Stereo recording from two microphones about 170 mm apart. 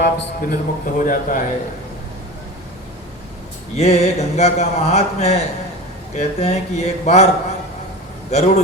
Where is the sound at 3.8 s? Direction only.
40° left (ahead or behind).